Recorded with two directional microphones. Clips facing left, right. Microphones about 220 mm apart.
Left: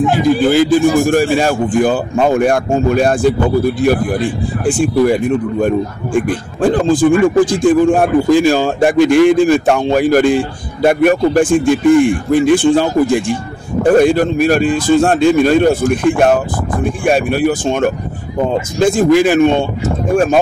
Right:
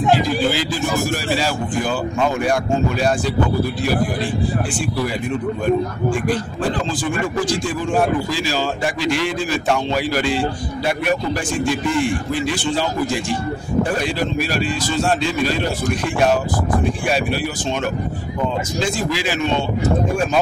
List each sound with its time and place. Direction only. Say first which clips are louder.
0.5 s a man's voice: left 11 dB; 50° left (ahead or behind)
4.6 s a man's voice: left 11 dB; 50° left (ahead or behind)
6.2 s a man's voice: left 6 dB; 50° left (ahead or behind)